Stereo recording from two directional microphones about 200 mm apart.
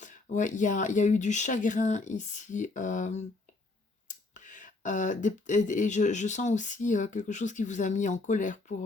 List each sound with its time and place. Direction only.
0.0 s speech: 40° left (ahead or behind)